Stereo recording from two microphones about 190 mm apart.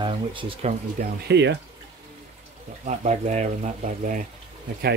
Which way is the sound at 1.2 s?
65° right (ahead or behind).